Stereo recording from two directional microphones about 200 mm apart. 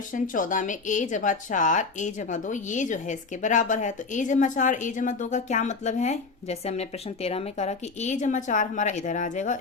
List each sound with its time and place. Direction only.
0.1 s speech: 40° left (ahead or behind)